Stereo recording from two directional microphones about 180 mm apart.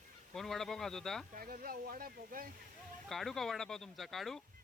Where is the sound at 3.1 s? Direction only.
Centre (ahead or behind).